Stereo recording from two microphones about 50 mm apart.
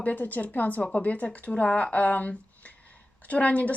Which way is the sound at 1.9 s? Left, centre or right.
Left.